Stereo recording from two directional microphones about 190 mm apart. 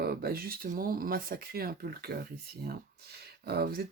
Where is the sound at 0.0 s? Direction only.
55° right (ahead or behind).